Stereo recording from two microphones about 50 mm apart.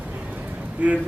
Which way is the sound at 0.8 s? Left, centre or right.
Right.